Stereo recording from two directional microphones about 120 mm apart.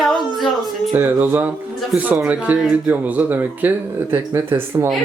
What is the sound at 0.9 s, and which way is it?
Speech, 15° right (ahead or behind).